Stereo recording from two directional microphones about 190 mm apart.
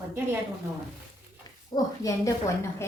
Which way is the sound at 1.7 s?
20° left (ahead or behind).